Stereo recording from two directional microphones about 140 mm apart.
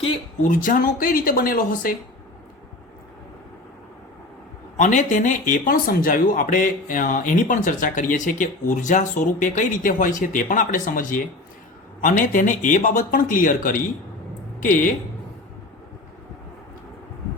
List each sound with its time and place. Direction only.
0.4 s speech: 70° left (ahead or behind); by 2.0 s 90° left
4.8 s speech: 60° left (ahead or behind)